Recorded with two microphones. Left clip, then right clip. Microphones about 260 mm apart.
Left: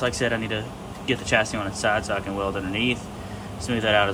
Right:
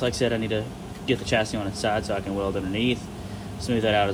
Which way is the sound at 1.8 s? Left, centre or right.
Centre.